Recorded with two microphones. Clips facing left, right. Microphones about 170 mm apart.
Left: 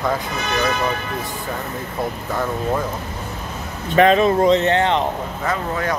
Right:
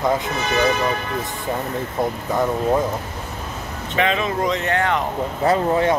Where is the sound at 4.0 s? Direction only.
40° left (ahead or behind); by 5.0 s 25° left (ahead or behind).